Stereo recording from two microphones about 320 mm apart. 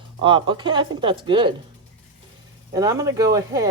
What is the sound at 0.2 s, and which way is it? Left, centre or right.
Speech, centre.